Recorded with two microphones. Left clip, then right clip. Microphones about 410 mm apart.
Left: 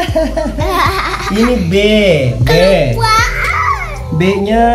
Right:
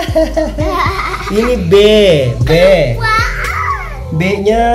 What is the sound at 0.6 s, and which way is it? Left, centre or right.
Music, left.